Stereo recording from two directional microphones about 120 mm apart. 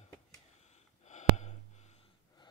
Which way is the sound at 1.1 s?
75° left (ahead or behind).